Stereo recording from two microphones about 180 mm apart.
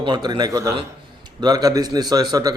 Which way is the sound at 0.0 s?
25° right (ahead or behind).